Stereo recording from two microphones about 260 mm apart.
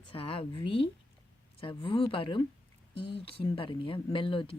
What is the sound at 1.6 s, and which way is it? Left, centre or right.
Speech, left.